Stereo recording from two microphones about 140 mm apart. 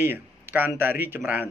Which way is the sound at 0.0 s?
15° right (ahead or behind).